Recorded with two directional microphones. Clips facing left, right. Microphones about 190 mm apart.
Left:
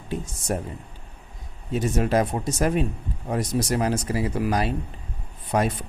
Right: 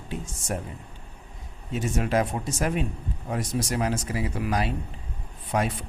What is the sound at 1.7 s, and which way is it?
Speech, 40° left (ahead or behind).